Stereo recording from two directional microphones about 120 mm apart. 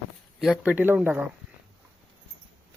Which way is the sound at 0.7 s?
15° right (ahead or behind).